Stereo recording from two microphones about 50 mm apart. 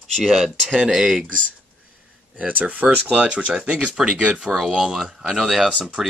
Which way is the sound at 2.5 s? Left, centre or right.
Right.